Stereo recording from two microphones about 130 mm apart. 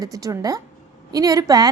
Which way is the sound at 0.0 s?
25° right (ahead or behind).